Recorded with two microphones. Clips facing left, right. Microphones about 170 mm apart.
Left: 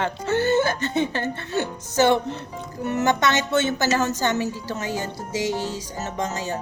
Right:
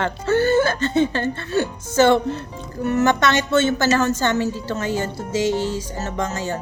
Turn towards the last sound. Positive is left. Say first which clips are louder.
# right 2 dB
turn(degrees=15)  # may be behind; listen again after turning